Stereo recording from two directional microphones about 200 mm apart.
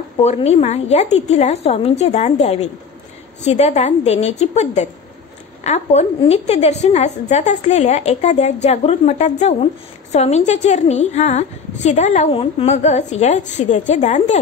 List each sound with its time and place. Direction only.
0.2 s a woman's voice: 35° left (ahead or behind)